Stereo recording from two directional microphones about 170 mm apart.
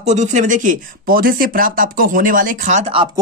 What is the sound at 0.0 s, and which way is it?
Speech, 45° right (ahead or behind).